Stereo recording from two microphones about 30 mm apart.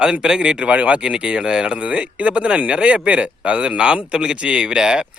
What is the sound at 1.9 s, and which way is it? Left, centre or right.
Speech, right.